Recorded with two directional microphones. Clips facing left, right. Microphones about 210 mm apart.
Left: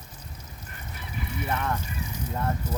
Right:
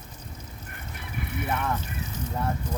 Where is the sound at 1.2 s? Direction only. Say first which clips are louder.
Right 1 dB; 55° right (ahead or behind).